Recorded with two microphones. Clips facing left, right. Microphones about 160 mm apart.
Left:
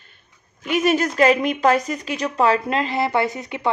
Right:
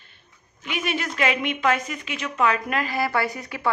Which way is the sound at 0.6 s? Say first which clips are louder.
Left 9 dB; 40° left (ahead or behind).